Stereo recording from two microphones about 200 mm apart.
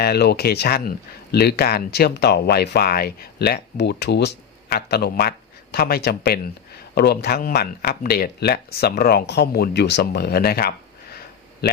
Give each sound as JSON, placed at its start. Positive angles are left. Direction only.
{"t": 0.0, "sound": "speech", "side_deg": 55}